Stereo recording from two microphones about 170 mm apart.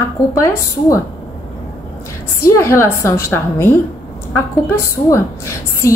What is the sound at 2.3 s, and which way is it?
A woman's voice, 15° left (ahead or behind).